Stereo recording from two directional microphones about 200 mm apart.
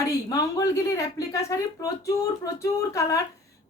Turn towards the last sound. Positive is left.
turn(degrees=15)  # may be behind; listen again after turning